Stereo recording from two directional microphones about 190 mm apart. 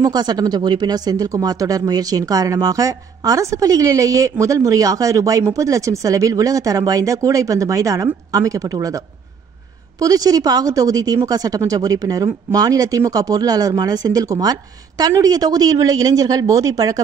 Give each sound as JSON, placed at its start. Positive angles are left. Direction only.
{"t": 0.0, "sound": "a woman's voice", "side_deg": -20}